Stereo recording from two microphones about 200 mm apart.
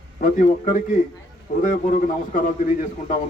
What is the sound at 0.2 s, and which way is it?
A man's voice, 40° left (ahead or behind).